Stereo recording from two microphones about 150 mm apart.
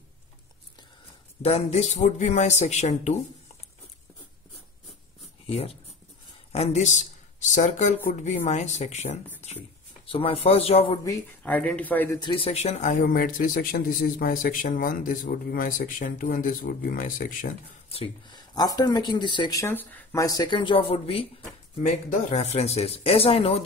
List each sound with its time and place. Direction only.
1.4 s speech: 45° left (ahead or behind)
6.5 s a man's voice: 45° left (ahead or behind)
11.4 s speech: 10° left (ahead or behind)
12.2 s speech: 35° left (ahead or behind); by 17.6 s 65° left (ahead or behind)
17.9 s speech: 35° left (ahead or behind)
19.6 s speech: 15° left (ahead or behind); by 23.6 s 40° left (ahead or behind)